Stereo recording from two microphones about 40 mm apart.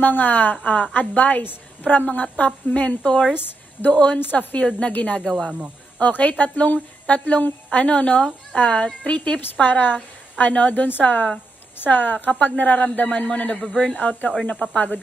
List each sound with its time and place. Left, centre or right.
0.0 s a woman's voice: left
3.0 s a woman's voice: left
3.3 s speech: left
3.9 s a woman's voice: left
4.2 s a woman's voice: left
4.6 s a woman's voice: left
5.9 s a woman's voice: left
9.7 s a woman's voice: left
13.5 s a woman's voice: left
13.9 s a woman's voice: left
14.4 s a woman's voice: left